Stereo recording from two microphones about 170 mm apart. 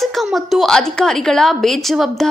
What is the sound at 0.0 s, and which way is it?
A woman's voice, centre (ahead or behind).